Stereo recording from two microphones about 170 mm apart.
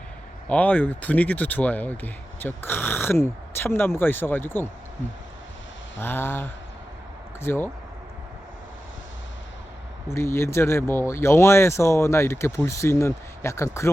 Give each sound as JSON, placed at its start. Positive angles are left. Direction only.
{"t": 0.4, "sound": "speech", "side_deg": 10}
{"t": 6.0, "sound": "speech", "side_deg": 15}
{"t": 10.1, "sound": "speech", "side_deg": 15}